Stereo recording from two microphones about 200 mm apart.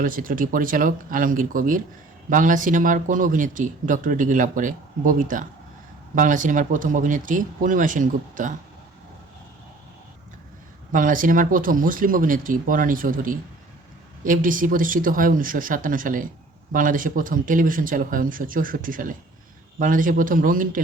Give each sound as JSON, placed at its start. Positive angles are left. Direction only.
{"t": 0.0, "sound": "speech", "side_deg": -45}
{"t": 10.9, "sound": "speech", "side_deg": -40}